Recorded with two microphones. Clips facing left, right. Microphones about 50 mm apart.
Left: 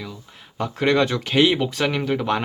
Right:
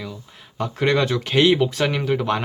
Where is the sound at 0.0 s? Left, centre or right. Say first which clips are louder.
Right 1 dB; centre.